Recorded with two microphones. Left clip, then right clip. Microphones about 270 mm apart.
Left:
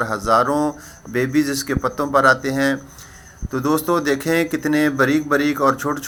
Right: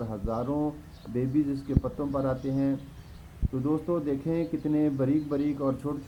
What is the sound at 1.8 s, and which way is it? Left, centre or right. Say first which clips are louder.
A man's voice: left 19 dB; left.